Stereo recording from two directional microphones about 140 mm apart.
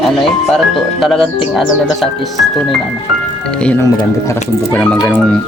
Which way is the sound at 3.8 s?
20° left (ahead or behind).